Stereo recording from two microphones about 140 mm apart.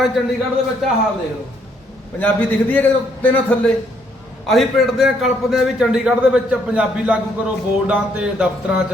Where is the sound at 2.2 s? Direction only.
10° left (ahead or behind).